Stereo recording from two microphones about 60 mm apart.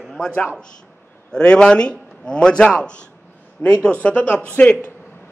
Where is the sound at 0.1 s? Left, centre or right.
Centre.